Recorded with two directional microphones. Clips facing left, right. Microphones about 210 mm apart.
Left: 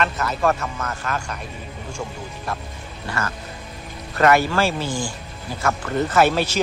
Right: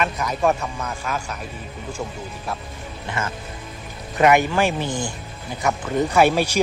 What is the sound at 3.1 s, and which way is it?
A man's voice, 25° right (ahead or behind).